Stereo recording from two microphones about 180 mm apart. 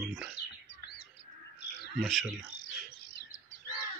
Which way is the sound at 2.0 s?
Centre (ahead or behind).